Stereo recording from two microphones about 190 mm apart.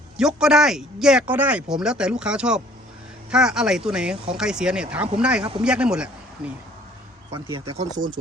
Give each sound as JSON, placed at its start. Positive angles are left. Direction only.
{"t": 0.2, "sound": "speech", "side_deg": -5}
{"t": 7.3, "sound": "speech", "side_deg": -25}